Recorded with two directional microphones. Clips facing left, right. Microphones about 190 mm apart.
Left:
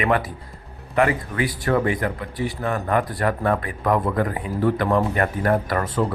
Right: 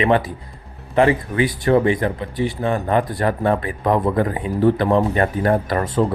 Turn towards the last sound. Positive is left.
turn(degrees=-30)  # may be behind; listen again after turning